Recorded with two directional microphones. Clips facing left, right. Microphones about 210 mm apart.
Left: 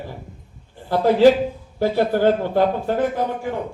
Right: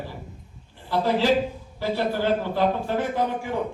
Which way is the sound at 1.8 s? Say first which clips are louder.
Left 7 dB; 50° left (ahead or behind).